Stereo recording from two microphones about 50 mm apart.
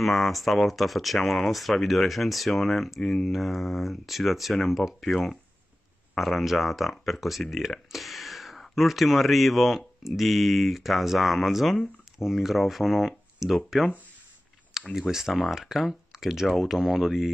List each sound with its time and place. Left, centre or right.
0.0 s speech: centre
14.7 s speech: centre